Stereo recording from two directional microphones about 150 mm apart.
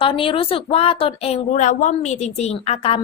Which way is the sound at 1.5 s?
55° left (ahead or behind).